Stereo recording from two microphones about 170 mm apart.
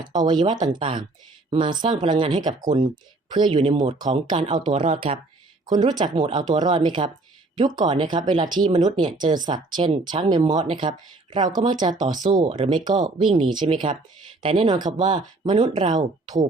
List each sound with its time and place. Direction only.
0.2 s speech: 25° right (ahead or behind)